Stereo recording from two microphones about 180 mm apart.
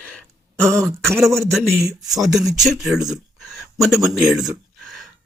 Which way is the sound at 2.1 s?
Centre (ahead or behind).